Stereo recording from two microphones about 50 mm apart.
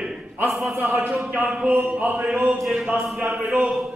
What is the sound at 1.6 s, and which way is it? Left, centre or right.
Mantra, right.